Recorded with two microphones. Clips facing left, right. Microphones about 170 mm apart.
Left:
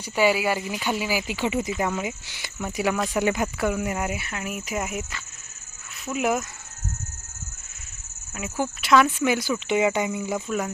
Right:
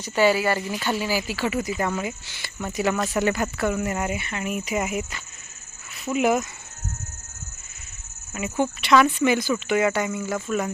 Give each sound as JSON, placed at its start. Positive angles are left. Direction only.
{"t": 0.0, "sound": "speech", "side_deg": 10}
{"t": 1.8, "sound": "speech", "side_deg": 10}
{"t": 6.1, "sound": "speech", "side_deg": 0}
{"t": 8.3, "sound": "speech", "side_deg": 0}